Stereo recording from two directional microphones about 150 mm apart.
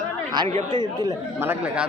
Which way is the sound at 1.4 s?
10° right (ahead or behind).